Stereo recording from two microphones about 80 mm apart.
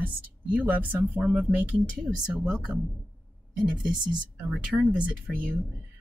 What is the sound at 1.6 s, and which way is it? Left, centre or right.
Speech, centre.